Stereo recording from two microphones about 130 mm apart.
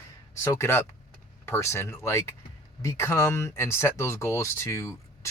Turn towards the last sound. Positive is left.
turn(degrees=20)  # may be behind; listen again after turning